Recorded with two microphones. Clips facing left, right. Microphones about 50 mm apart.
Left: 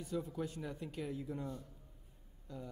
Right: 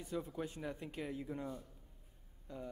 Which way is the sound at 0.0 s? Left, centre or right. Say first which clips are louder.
Left 2 dB; right.